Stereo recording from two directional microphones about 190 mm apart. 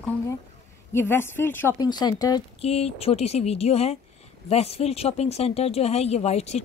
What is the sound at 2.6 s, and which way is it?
Speech, 30° left (ahead or behind).